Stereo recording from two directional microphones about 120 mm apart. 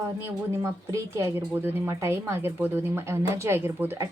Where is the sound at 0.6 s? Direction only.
25° right (ahead or behind).